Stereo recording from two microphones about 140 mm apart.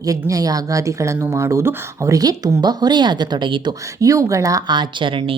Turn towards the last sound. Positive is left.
turn(degrees=-40)  # may be behind; listen again after turning